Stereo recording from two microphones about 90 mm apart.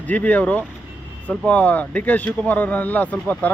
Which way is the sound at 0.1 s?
15° left (ahead or behind).